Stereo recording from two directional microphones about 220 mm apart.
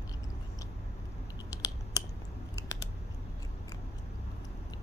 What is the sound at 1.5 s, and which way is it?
Typing, 15° left (ahead or behind).